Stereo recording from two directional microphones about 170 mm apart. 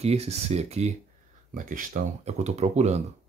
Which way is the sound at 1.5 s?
50° right (ahead or behind).